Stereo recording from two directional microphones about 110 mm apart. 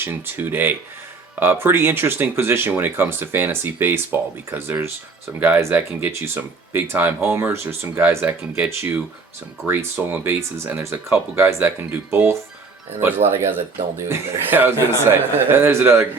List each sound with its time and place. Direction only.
0.0 s speech: 20° right (ahead or behind)